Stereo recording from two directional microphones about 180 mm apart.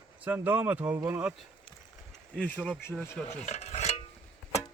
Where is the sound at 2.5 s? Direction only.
5° right (ahead or behind).